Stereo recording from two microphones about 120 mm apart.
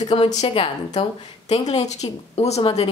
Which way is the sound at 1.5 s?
65° left (ahead or behind).